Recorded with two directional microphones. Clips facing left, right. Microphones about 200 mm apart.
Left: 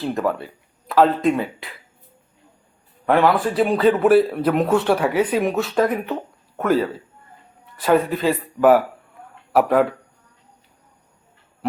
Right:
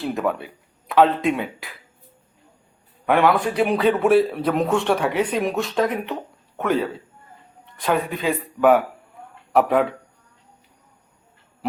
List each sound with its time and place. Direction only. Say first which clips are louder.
0.0 s speech: left 1 dB; centre (ahead or behind)
3.1 s a man's voice: left 1 dB; centre (ahead or behind)